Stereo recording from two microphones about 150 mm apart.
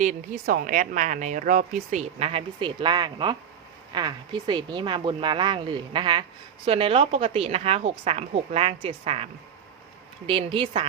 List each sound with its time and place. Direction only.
0.0 s a woman's voice: 60° right (ahead or behind); by 10.8 s 35° right (ahead or behind)